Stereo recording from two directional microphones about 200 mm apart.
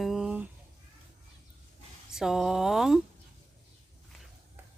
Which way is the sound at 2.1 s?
Centre (ahead or behind).